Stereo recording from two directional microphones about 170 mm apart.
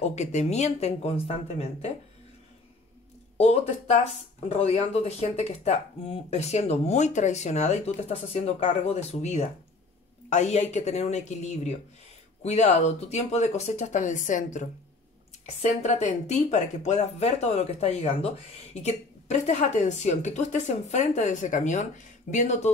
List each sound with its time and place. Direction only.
0.0 s speech: 40° left (ahead or behind)
3.3 s speech: 40° left (ahead or behind)